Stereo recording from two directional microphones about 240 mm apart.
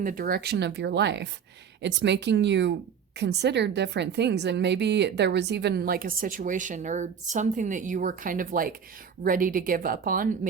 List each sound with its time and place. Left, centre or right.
0.0 s a woman's voice: right